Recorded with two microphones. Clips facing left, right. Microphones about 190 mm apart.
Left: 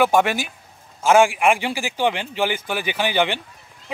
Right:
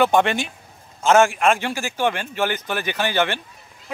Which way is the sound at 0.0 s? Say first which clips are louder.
Even; 5° left (ahead or behind).